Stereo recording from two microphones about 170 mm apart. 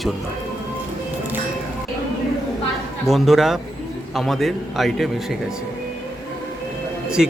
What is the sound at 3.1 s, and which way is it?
Speech, centre (ahead or behind).